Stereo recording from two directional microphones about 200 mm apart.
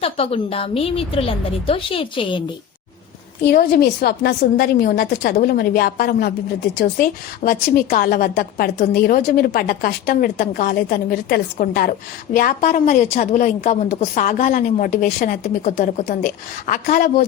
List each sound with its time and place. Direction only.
0.0 s a woman's voice: 30° left (ahead or behind)
3.4 s a woman's voice: 45° left (ahead or behind)